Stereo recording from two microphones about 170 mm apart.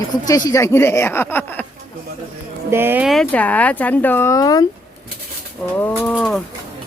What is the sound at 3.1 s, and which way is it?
Speech, 5° left (ahead or behind).